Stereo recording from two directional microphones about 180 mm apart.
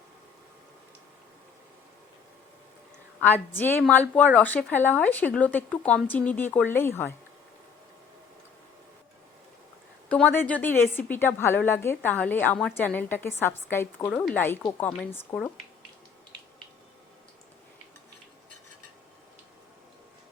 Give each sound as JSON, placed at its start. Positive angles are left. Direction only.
{"t": 3.2, "sound": "a woman's voice", "side_deg": 10}
{"t": 10.1, "sound": "a woman's voice", "side_deg": 10}